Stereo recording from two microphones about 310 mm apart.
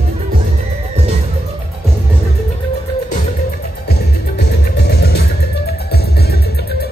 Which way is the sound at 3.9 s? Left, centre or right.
Left.